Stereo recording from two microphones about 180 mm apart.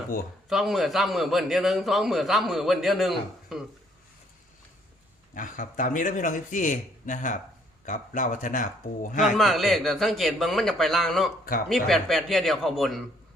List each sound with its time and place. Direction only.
0.4 s a man's voice: centre (ahead or behind)
5.3 s a man's voice: 45° left (ahead or behind)
9.2 s a man's voice: centre (ahead or behind)